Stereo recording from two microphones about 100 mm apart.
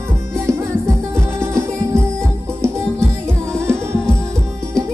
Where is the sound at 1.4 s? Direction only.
25° right (ahead or behind).